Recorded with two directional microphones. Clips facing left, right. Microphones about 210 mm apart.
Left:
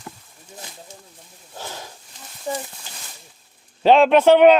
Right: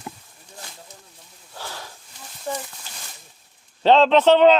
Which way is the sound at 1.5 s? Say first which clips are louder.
Left 2 dB; 20° left (ahead or behind).